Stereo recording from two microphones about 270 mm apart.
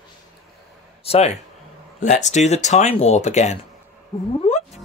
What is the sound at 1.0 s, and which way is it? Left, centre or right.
A man's voice, left.